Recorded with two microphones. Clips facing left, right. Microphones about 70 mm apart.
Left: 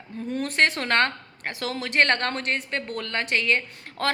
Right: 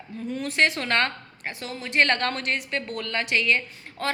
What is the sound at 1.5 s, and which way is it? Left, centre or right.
Speech, left.